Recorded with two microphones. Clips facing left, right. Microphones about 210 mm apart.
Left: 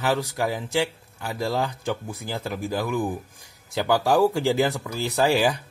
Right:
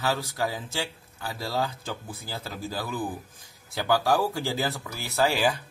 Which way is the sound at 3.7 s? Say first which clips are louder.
Left 4 dB; 20° left (ahead or behind).